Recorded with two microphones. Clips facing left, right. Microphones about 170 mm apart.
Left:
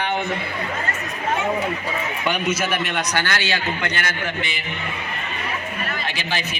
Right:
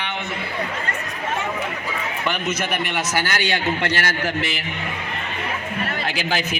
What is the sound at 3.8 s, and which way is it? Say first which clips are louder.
Speech: right 3 dB; 40° right (ahead or behind).